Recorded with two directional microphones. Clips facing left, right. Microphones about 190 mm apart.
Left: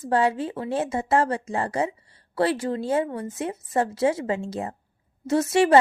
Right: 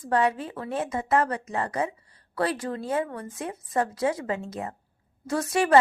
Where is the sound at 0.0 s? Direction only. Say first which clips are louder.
Left 2 dB; 30° left (ahead or behind).